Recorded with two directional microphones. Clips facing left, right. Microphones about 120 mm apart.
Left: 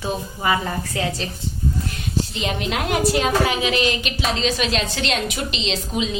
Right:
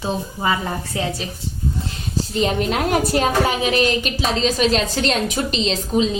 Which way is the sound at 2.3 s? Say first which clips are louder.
Right 5 dB; 40° right (ahead or behind).